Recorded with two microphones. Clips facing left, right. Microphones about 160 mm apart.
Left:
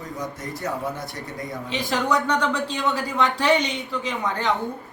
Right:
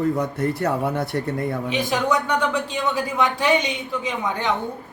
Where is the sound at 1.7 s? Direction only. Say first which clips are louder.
Even; 20° right (ahead or behind).